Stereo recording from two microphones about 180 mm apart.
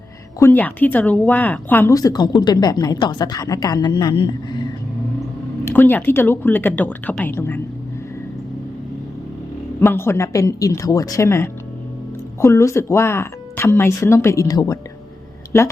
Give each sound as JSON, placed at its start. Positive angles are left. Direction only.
{"t": 0.3, "sound": "speech", "side_deg": 10}
{"t": 5.6, "sound": "speech", "side_deg": 10}
{"t": 9.8, "sound": "speech", "side_deg": 15}